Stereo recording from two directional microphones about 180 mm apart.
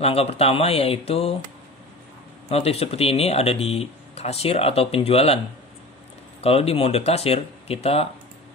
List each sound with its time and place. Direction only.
0.0 s speech: 35° left (ahead or behind)
2.5 s speech: 35° left (ahead or behind)
6.4 s speech: 35° left (ahead or behind)